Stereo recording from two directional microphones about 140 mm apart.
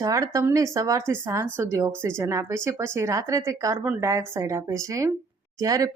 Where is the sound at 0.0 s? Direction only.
25° right (ahead or behind).